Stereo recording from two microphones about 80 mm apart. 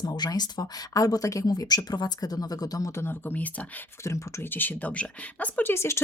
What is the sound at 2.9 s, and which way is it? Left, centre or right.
Speech, left.